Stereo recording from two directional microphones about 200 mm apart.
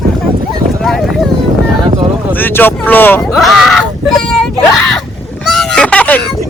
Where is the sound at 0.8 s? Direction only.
Centre (ahead or behind).